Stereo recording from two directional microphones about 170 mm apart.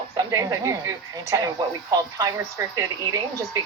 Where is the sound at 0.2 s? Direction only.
20° right (ahead or behind).